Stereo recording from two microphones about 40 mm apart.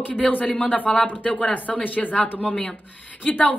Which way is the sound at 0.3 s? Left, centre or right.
Left.